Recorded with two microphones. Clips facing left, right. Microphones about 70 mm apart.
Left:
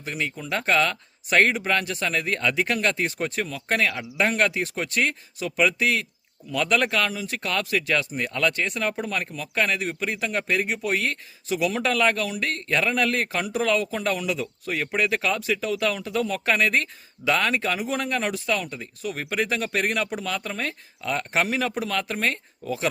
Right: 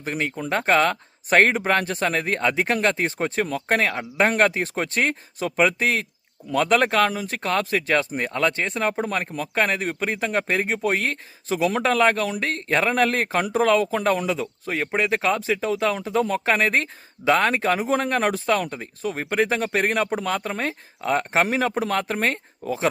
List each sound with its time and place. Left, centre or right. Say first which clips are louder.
0.0 s speech: right 4 dB; right